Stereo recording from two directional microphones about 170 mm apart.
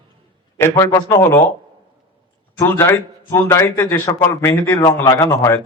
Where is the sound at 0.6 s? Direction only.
15° left (ahead or behind).